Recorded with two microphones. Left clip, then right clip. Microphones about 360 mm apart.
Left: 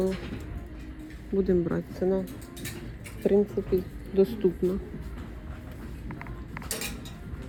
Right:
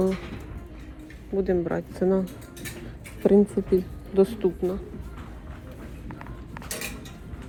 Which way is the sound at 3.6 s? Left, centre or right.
Right.